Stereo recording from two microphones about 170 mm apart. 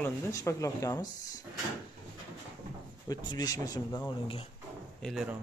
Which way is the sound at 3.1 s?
25° left (ahead or behind).